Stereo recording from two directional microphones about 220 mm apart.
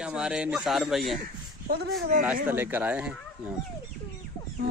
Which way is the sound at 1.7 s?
45° right (ahead or behind).